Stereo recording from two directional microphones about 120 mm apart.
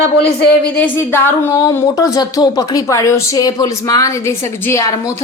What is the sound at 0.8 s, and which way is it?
Speech, 20° left (ahead or behind).